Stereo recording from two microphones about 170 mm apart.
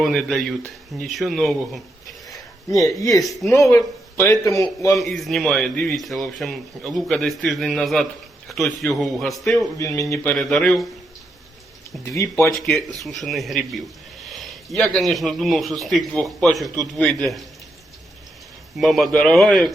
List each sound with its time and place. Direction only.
0.0 s a man's voice: centre (ahead or behind)
3.7 s a man's voice: 15° left (ahead or behind)
4.9 s a man's voice: centre (ahead or behind)
9.7 s speech: 20° left (ahead or behind)
10.3 s a man's voice: centre (ahead or behind)
12.0 s speech: 20° left (ahead or behind)
13.0 s a man's voice: centre (ahead or behind)
18.8 s a man's voice: centre (ahead or behind)